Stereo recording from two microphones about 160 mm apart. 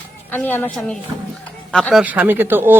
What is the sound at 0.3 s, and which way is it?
A woman's voice, 10° left (ahead or behind).